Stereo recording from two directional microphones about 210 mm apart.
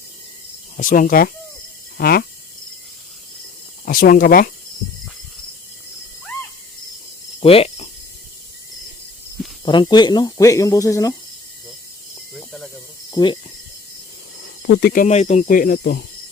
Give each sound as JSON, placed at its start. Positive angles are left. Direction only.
{"t": 0.8, "sound": "speech", "side_deg": 40}
{"t": 3.8, "sound": "speech", "side_deg": 45}
{"t": 7.4, "sound": "speech", "side_deg": 30}
{"t": 9.6, "sound": "speech", "side_deg": 20}
{"t": 12.3, "sound": "snake", "side_deg": 0}
{"t": 13.1, "sound": "speech", "side_deg": 20}
{"t": 14.7, "sound": "speech", "side_deg": 50}
{"t": 15.0, "sound": "speech", "side_deg": 30}